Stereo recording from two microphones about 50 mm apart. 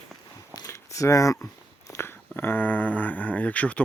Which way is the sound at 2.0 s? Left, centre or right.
Left.